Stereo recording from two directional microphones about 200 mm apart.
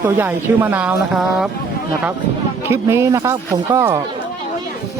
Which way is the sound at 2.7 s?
15° right (ahead or behind).